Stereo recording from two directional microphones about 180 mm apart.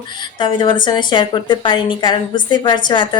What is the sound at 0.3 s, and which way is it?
A woman's voice, 25° left (ahead or behind).